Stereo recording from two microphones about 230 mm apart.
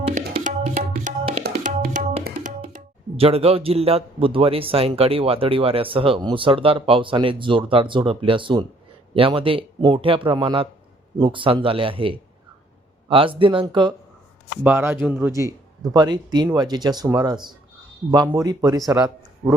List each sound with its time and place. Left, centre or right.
0.3 s tabla: right
1.5 s speech: right
14.6 s speech: centre
15.9 s speech: centre